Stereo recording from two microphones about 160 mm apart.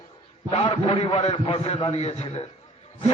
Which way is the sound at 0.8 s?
45° left (ahead or behind).